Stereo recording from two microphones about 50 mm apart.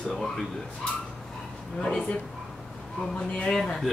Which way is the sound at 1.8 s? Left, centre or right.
Left.